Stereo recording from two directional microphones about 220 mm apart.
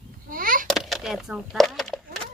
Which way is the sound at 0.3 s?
40° right (ahead or behind).